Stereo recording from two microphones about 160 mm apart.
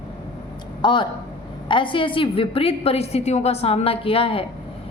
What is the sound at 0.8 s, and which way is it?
A woman's voice, 30° left (ahead or behind).